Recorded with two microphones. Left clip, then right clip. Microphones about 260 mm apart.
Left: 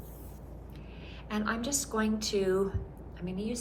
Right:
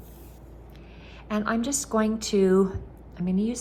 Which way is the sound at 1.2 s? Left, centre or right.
Right.